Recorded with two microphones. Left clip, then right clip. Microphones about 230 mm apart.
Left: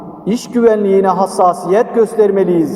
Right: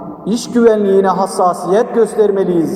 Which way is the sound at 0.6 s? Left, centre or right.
Left.